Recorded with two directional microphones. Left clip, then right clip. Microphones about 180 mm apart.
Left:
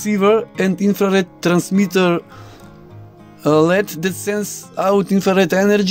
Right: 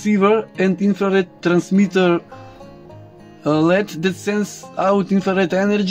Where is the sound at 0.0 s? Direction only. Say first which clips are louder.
Left 1 dB; 65° left (ahead or behind).